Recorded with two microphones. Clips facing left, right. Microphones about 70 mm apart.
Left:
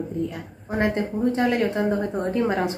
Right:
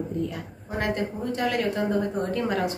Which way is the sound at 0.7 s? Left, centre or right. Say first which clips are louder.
Left 4 dB; left.